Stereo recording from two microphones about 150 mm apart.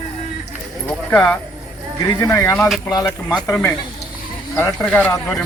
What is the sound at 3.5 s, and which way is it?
Speech, 10° left (ahead or behind).